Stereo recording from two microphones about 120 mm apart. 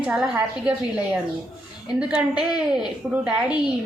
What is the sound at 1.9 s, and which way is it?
Speech, 5° right (ahead or behind).